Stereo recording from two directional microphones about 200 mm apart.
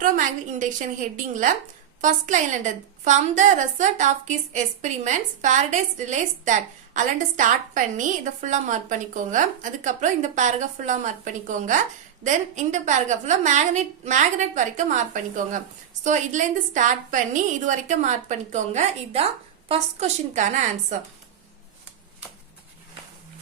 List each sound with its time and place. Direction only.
0.0 s a woman's voice: 40° right (ahead or behind)